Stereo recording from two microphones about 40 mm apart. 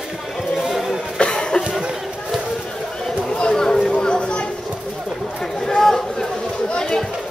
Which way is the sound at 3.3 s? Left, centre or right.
Centre.